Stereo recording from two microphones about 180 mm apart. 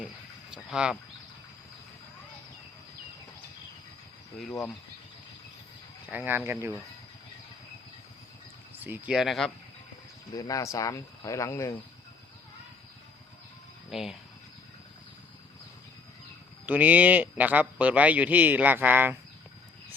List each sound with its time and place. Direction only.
0.5 s speech: 5° right (ahead or behind)
6.1 s a man's voice: 10° right (ahead or behind)
8.7 s speech: 10° right (ahead or behind)
10.3 s speech: 20° left (ahead or behind)
13.9 s speech: centre (ahead or behind)
16.6 s a man's voice: 10° right (ahead or behind)